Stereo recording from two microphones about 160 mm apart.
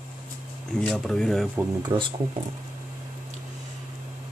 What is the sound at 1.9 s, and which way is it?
Speech, 15° right (ahead or behind).